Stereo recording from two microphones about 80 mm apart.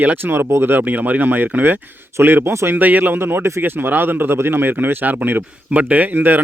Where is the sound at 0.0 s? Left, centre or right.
Right.